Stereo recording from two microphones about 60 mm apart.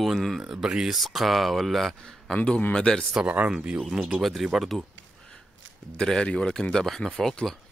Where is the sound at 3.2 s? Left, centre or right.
Right.